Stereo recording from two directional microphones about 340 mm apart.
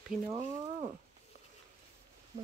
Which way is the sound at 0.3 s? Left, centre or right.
Centre.